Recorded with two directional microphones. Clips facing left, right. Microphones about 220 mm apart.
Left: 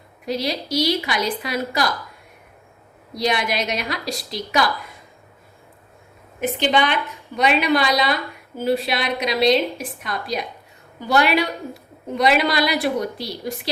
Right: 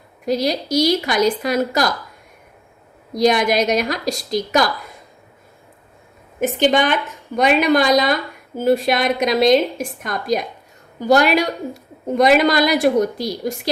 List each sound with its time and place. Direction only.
0.3 s a woman's voice: 45° right (ahead or behind)
3.1 s a woman's voice: 45° right (ahead or behind)
6.4 s a woman's voice: 45° right (ahead or behind)